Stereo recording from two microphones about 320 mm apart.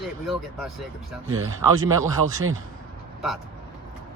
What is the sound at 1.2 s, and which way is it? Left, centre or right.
Speech, right.